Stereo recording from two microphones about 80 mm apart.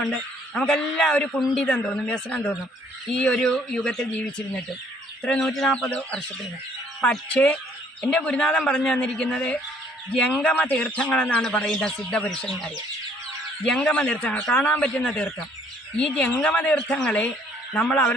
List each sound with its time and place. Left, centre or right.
0.0 s a man's voice: centre